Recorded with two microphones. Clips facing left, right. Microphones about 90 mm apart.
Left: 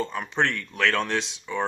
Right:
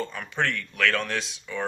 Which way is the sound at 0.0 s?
20° left (ahead or behind).